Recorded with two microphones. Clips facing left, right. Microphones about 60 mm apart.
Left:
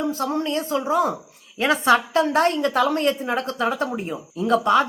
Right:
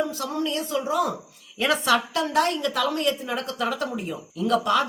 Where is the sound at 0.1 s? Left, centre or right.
Left.